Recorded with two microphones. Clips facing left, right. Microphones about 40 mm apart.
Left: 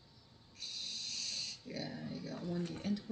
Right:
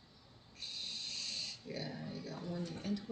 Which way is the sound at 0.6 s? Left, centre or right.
Centre.